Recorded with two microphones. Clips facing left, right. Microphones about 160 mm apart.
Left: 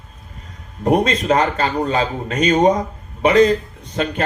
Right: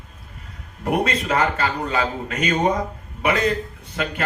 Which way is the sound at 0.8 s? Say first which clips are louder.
Left 6 dB; 30° left (ahead or behind).